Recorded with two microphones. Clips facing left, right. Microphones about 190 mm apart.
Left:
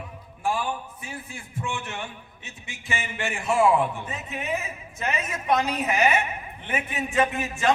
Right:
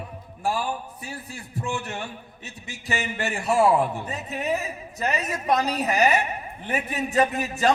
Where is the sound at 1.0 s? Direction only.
35° right (ahead or behind).